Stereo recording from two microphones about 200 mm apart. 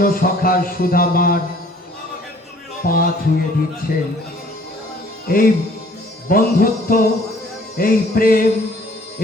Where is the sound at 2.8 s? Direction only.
50° left (ahead or behind).